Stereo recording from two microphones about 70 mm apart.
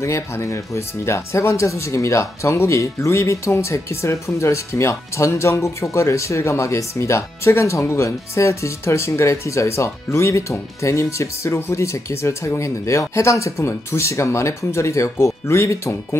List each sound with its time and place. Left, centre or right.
0.0 s speech: left